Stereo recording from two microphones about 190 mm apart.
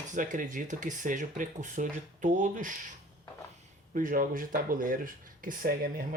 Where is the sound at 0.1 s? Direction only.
45° right (ahead or behind).